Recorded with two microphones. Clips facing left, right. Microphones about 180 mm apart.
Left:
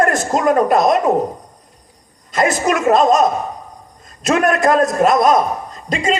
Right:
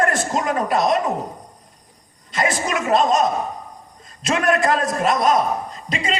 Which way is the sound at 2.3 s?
45° left (ahead or behind).